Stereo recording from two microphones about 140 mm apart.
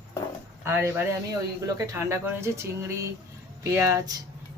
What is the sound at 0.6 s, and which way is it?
Speech, 15° right (ahead or behind).